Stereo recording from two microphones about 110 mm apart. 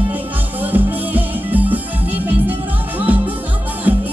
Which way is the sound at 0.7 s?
15° right (ahead or behind).